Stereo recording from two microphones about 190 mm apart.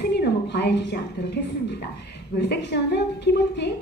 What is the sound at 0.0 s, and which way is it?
A woman's voice, 60° left (ahead or behind).